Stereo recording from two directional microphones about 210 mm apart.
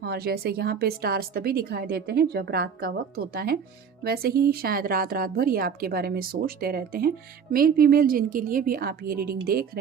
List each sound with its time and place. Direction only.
0.0 s a woman's voice: 50° right (ahead or behind)